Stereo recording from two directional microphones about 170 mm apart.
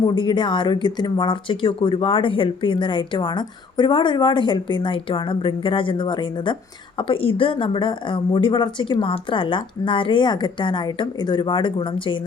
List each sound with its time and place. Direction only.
0.1 s speech: 30° left (ahead or behind)